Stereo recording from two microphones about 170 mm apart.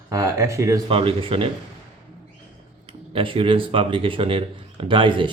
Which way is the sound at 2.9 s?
30° right (ahead or behind).